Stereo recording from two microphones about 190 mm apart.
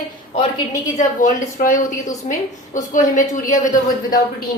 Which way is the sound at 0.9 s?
40° left (ahead or behind).